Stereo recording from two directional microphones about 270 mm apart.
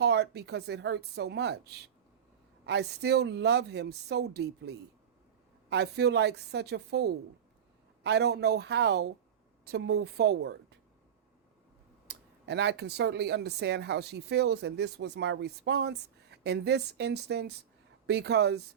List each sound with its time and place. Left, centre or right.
0.0 s speech: right
2.6 s speech: right
12.0 s speech: right